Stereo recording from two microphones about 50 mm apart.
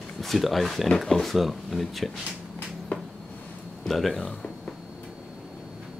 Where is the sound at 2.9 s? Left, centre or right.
Left.